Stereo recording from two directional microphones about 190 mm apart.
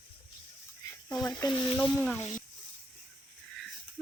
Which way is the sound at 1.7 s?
5° left (ahead or behind).